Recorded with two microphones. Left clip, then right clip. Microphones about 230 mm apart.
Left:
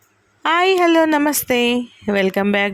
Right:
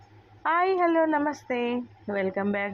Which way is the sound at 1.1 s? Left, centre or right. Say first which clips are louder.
Left 9 dB; left.